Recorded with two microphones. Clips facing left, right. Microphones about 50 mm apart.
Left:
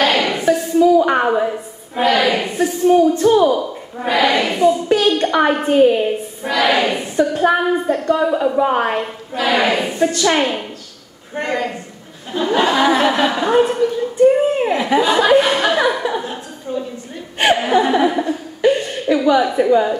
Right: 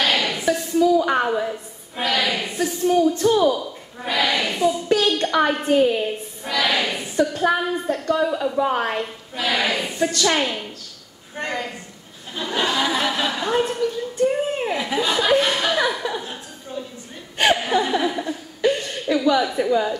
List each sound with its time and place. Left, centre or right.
0.0 s a sound: left
2.2 s a woman's voice: left
11.4 s a woman's voice: left
12.3 s a woman's voice: left
17.4 s chuckle: left